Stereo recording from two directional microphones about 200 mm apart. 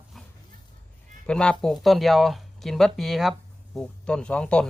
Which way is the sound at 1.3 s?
5° left (ahead or behind).